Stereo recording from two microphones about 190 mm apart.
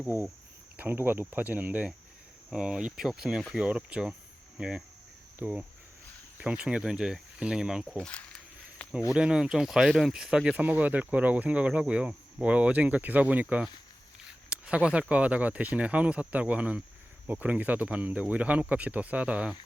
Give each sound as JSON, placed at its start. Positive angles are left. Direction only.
{"t": 0.8, "sound": "speech", "side_deg": -10}
{"t": 5.4, "sound": "cricket", "side_deg": -10}
{"t": 6.3, "sound": "speech", "side_deg": -5}
{"t": 8.8, "sound": "cricket", "side_deg": 5}
{"t": 9.1, "sound": "speech", "side_deg": -5}